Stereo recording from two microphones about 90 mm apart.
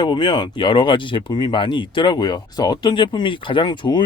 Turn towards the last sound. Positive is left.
turn(degrees=55)  # may be behind; listen again after turning